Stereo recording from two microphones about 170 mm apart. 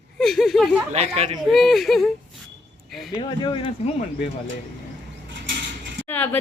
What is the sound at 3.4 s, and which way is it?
Speech, 30° left (ahead or behind).